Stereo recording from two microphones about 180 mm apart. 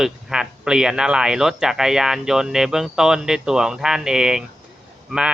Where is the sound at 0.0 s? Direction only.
5° right (ahead or behind).